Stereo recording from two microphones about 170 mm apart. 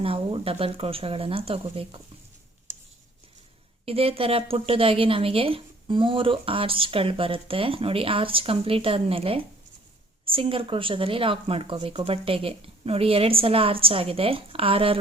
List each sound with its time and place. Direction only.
0.0 s a woman's voice: 35° right (ahead or behind)
3.8 s a woman's voice: 35° right (ahead or behind)